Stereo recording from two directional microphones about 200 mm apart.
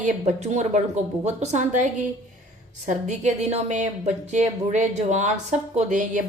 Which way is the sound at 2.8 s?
35° right (ahead or behind).